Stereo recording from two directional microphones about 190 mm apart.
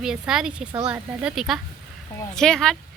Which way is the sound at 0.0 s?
Centre (ahead or behind).